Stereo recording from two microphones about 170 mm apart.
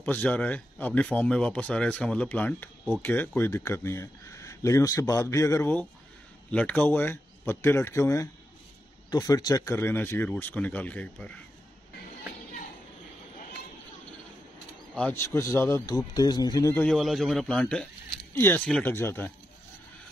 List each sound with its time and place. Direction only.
0.0 s speech: 10° left (ahead or behind)
15.0 s speech: 10° left (ahead or behind)
16.8 s a man's voice: centre (ahead or behind)